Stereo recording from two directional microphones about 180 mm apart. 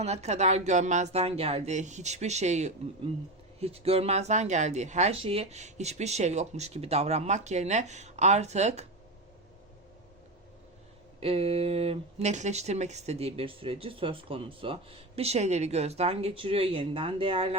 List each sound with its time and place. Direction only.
0.0 s speech: 35° right (ahead or behind)
11.2 s speech: 35° right (ahead or behind)